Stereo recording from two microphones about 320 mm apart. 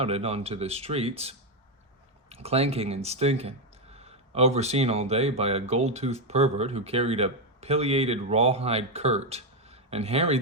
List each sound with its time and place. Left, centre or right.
0.0 s speech: centre